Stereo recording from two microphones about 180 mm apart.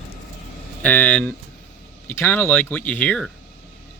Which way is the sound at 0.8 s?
10° left (ahead or behind).